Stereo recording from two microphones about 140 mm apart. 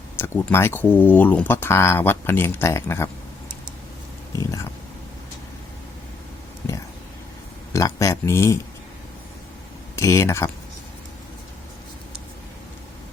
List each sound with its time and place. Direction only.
0.2 s speech: 15° left (ahead or behind)
7.7 s speech: 20° left (ahead or behind)
9.9 s speech: 20° left (ahead or behind)